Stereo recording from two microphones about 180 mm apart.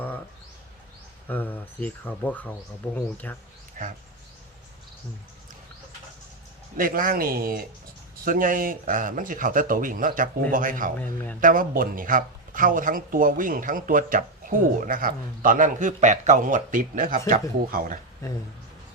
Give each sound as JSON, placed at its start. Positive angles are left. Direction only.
{"t": 1.3, "sound": "speech", "side_deg": 10}
{"t": 3.8, "sound": "speech", "side_deg": -50}
{"t": 6.7, "sound": "speech", "side_deg": -50}